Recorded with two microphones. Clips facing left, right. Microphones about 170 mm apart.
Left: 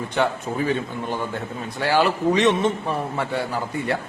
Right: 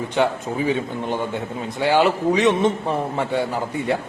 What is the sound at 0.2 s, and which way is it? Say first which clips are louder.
A man's voice: right 2 dB; 15° right (ahead or behind).